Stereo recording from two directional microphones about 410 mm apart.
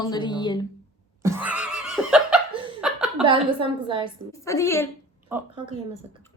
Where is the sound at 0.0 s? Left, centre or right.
Centre.